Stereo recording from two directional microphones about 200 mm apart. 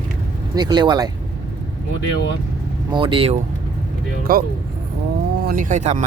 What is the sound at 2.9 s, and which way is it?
Speech, 25° right (ahead or behind).